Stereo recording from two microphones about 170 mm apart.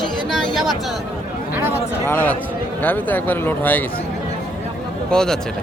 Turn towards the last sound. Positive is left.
turn(degrees=5)  # may be behind; listen again after turning